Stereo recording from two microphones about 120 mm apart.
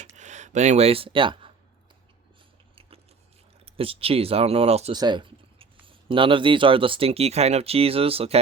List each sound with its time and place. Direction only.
0.2 s speech: 80° right; by 1.5 s 45° right (ahead or behind)
3.7 s speech: 50° right (ahead or behind)
4.9 s speech: 40° right (ahead or behind)